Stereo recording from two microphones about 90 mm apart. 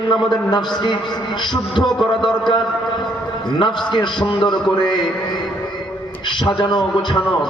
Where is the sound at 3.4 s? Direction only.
60° left (ahead or behind).